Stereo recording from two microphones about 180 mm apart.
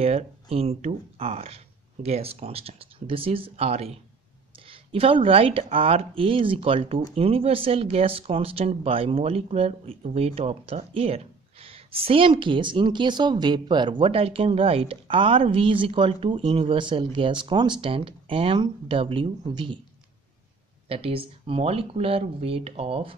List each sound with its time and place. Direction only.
0.0 s speech: 35° right (ahead or behind)
20.9 s speech: 30° right (ahead or behind)